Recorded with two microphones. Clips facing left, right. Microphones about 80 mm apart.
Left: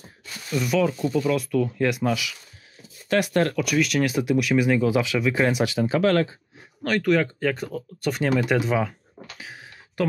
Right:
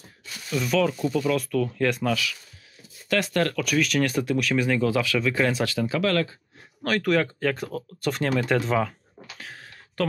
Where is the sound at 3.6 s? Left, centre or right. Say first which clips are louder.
Left 1 dB; centre; by 6.3 s left.